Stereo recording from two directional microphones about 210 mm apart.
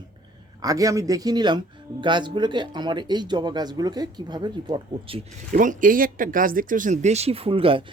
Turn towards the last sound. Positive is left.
turn(degrees=-25)  # may be behind; listen again after turning